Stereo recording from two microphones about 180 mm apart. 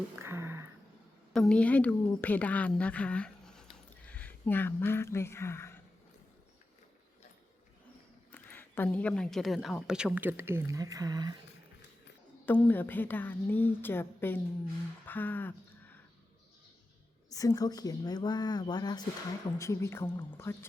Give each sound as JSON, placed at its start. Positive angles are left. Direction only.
{"t": 0.2, "sound": "a sound", "side_deg": -15}
{"t": 1.3, "sound": "a woman's voice", "side_deg": 5}
{"t": 8.3, "sound": "speech", "side_deg": 10}
{"t": 12.5, "sound": "a woman's voice", "side_deg": 10}
{"t": 15.0, "sound": "a sound", "side_deg": 10}
{"t": 17.2, "sound": "a woman's voice", "side_deg": 20}